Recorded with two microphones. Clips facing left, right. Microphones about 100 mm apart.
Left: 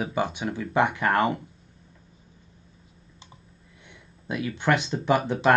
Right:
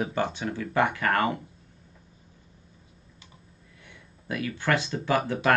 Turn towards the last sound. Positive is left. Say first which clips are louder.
# left 3 dB
turn(degrees=20)  # may be behind; listen again after turning